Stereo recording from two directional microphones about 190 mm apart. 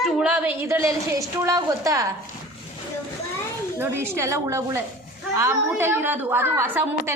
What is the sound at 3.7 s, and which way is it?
A woman's voice, 15° right (ahead or behind).